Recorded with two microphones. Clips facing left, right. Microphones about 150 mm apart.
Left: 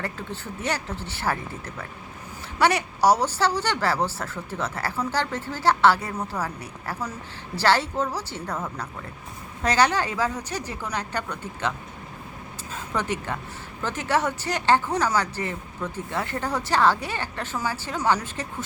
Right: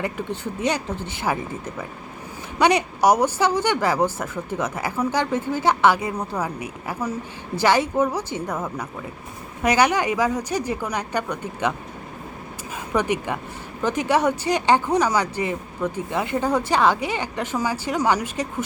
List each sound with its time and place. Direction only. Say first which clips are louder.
0.0 s speech: right 6 dB; 15° right (ahead or behind)
12.7 s speech: right 5 dB; 15° right (ahead or behind)